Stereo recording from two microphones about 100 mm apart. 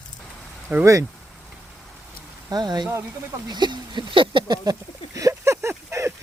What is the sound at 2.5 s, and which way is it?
Speech, 45° right (ahead or behind).